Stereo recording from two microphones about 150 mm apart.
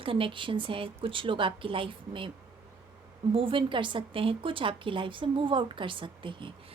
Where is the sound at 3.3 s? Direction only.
35° right (ahead or behind).